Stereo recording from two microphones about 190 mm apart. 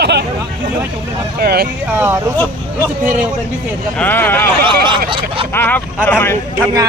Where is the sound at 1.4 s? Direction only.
55° right (ahead or behind).